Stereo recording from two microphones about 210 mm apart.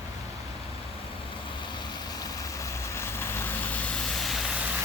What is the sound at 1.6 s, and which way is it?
Vehicle, 20° left (ahead or behind).